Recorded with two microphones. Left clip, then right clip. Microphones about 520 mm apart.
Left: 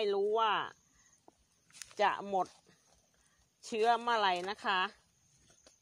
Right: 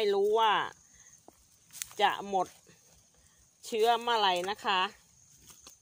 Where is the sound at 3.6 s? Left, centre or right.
Left.